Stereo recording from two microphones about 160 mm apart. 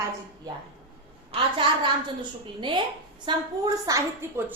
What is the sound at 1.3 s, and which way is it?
A woman's voice, 35° right (ahead or behind).